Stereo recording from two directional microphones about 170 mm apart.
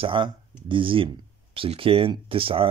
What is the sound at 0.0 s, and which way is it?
Speech, 30° right (ahead or behind).